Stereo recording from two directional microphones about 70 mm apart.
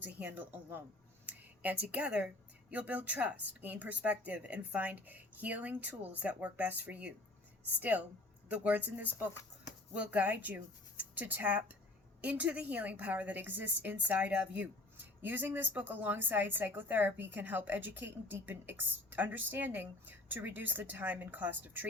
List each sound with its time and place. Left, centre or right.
0.0 s a woman's voice: right